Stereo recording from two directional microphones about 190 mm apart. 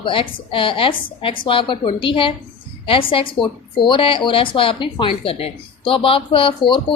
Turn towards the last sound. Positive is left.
turn(degrees=25)  # may be behind; listen again after turning